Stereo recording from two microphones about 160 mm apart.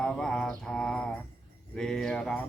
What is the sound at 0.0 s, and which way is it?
Mantra, 5° left (ahead or behind).